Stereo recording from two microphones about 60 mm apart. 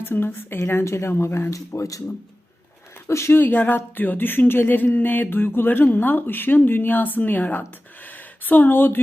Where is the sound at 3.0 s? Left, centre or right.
Left.